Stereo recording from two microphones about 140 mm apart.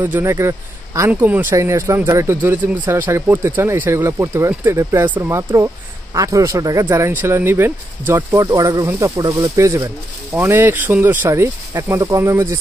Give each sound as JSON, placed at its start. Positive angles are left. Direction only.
{"t": 0.0, "sound": "speech", "side_deg": -15}